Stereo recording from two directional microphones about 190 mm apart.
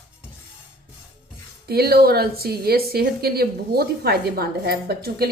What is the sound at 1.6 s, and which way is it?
Speech, 55° right (ahead or behind).